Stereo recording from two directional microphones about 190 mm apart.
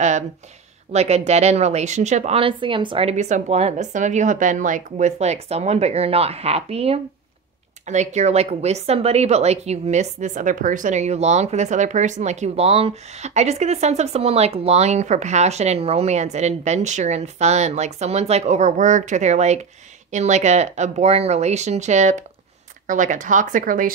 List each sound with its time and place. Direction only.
0.9 s a woman's voice: 35° right (ahead or behind)